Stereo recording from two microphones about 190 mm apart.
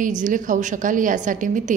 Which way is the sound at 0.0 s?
45° right (ahead or behind).